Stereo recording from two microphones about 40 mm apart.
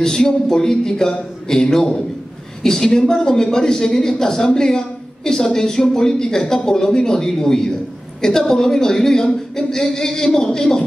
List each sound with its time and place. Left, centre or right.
0.0 s speech: centre